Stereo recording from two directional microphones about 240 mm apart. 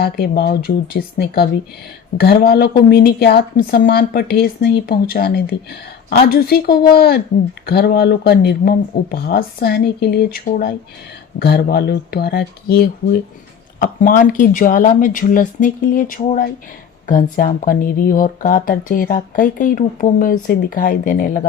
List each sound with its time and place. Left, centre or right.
0.0 s speech: left
17.3 s speech: left